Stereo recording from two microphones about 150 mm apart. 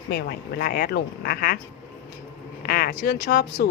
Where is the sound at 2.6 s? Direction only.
75° left (ahead or behind).